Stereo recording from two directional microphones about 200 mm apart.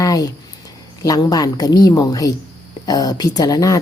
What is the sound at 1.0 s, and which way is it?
Speech, 20° left (ahead or behind).